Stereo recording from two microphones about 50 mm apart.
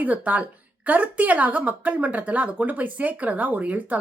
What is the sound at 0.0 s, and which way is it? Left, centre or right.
Speech, right.